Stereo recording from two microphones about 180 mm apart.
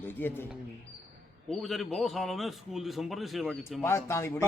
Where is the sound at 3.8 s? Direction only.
15° left (ahead or behind).